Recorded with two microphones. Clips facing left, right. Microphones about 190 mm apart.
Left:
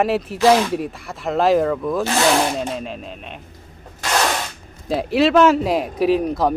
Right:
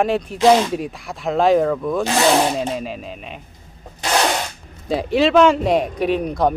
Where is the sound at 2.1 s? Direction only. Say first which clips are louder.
Right 2 dB; 15° right (ahead or behind).